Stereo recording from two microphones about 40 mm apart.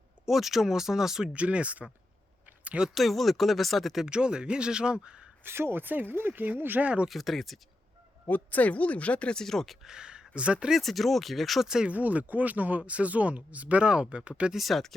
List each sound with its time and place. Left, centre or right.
0.3 s speech: centre
1.3 s speech: right
2.9 s speech: centre
4.0 s speech: right
5.4 s speech: right
6.8 s speech: right
7.1 s speech: centre
8.3 s speech: left
9.3 s speech: centre
9.8 s speech: centre
10.8 s speech: centre
11.9 s speech: right
12.8 s speech: right
14.5 s speech: centre